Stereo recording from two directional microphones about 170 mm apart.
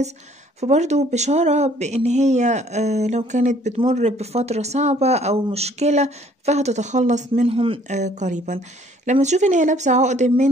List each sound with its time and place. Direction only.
0.6 s speech: 40° right (ahead or behind)